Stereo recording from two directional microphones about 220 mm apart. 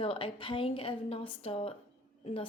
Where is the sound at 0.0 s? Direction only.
25° left (ahead or behind).